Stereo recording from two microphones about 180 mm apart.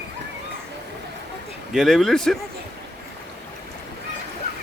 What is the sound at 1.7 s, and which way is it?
Speech, centre (ahead or behind).